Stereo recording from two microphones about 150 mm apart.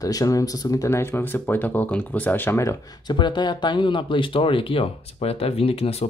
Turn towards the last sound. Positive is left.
turn(degrees=40)  # may be behind; listen again after turning